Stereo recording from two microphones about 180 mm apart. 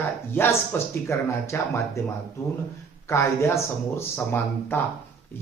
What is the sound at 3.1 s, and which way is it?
Speech, 15° left (ahead or behind).